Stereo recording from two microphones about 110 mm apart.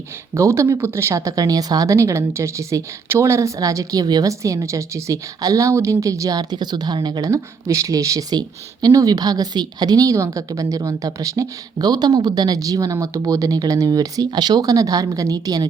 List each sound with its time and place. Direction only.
0.3 s speech: 25° right (ahead or behind); by 7.3 s 45° right (ahead or behind)
7.3 s speech: 30° right (ahead or behind)